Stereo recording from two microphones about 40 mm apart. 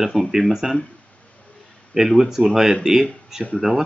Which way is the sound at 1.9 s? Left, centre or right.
Centre.